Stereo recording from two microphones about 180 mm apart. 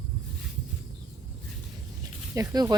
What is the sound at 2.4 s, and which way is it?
Speech, 20° right (ahead or behind).